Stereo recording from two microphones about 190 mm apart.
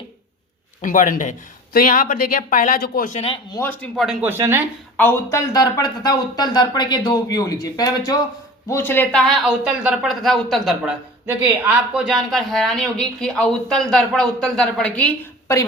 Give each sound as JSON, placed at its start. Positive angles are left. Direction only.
{"t": 0.8, "sound": "speech", "side_deg": 40}
{"t": 3.5, "sound": "speech", "side_deg": 10}
{"t": 4.0, "sound": "speech", "side_deg": -5}
{"t": 4.9, "sound": "a woman's voice", "side_deg": 15}